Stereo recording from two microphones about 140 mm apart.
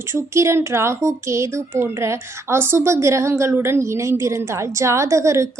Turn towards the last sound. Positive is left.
turn(degrees=-20)  # may be behind; listen again after turning